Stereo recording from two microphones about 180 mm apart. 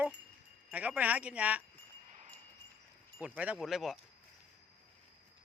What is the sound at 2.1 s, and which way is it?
Wind chime, 45° right (ahead or behind).